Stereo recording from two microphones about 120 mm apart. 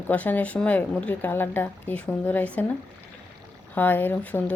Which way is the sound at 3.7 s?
15° left (ahead or behind).